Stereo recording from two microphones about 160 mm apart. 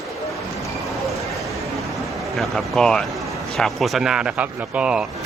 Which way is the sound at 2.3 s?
Centre (ahead or behind).